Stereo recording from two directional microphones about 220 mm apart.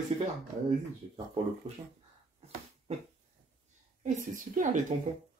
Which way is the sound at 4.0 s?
35° right (ahead or behind).